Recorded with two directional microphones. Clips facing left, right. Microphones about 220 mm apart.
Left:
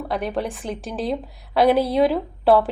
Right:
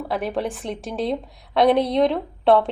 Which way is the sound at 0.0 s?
Centre (ahead or behind).